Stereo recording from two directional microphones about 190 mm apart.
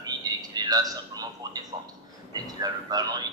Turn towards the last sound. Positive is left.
turn(degrees=-20)  # may be behind; listen again after turning